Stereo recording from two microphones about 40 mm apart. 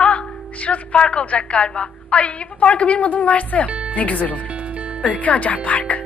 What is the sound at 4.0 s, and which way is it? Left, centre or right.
Speech, left.